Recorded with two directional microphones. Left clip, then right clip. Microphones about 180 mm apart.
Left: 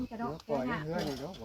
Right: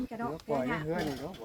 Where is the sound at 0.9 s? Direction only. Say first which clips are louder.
Right 1 dB; 55° left (ahead or behind).